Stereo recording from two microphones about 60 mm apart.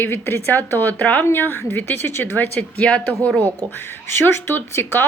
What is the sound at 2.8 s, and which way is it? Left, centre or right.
Speech, centre.